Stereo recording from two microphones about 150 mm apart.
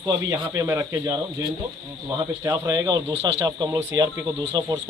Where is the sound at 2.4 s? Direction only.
20° right (ahead or behind).